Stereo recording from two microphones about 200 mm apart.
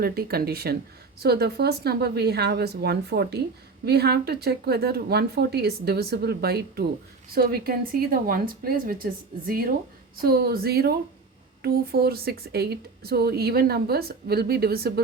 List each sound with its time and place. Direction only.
0.0 s speech: 50° right (ahead or behind)